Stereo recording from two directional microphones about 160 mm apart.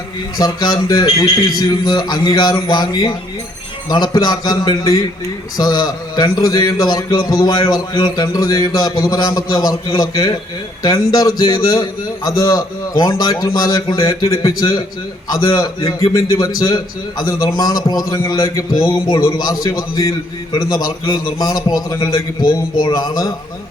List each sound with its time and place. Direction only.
0.3 s a man's voice: 25° left (ahead or behind)